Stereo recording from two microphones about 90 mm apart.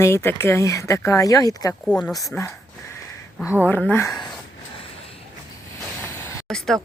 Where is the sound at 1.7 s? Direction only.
15° left (ahead or behind).